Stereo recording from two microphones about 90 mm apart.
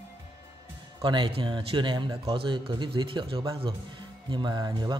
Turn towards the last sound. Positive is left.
turn(degrees=-55)  # may be behind; listen again after turning